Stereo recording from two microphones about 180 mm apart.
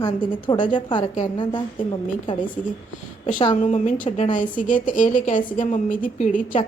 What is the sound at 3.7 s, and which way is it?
A woman's voice, 45° left (ahead or behind).